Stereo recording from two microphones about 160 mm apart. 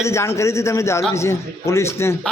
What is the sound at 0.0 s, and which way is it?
A man's voice, 15° left (ahead or behind).